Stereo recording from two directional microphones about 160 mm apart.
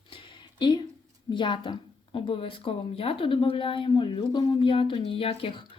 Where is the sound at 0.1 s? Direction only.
30° left (ahead or behind).